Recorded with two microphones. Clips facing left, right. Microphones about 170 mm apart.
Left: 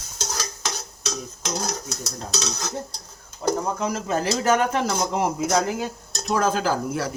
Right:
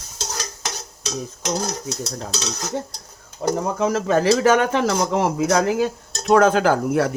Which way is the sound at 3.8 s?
90° right.